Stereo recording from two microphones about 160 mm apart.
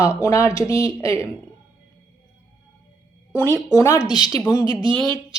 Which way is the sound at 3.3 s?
15° left (ahead or behind).